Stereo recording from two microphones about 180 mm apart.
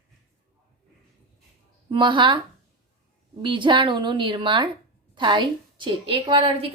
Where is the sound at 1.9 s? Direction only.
25° right (ahead or behind).